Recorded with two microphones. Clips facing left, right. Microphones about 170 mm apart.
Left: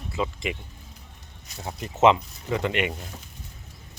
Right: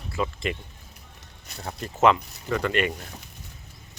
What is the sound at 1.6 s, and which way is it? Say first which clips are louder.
Speech: left 2 dB; 15° left (ahead or behind).